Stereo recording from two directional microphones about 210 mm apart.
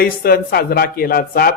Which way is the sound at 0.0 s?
45° left (ahead or behind).